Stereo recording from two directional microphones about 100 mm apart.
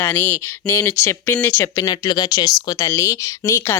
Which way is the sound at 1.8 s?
40° left (ahead or behind).